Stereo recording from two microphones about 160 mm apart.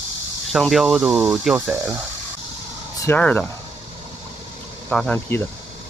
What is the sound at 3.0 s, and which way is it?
Speech, 10° left (ahead or behind).